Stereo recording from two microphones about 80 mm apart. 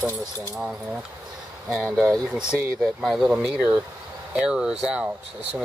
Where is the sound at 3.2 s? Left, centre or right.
Centre.